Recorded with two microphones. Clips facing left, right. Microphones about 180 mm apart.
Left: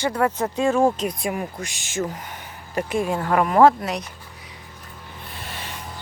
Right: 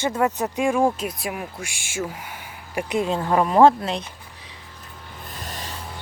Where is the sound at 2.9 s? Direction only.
20° right (ahead or behind).